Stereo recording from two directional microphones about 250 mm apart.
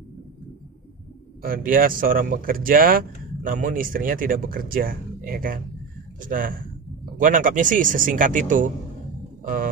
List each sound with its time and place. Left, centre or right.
1.4 s speech: right